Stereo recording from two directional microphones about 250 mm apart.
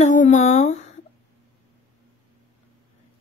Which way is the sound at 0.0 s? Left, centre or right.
Left.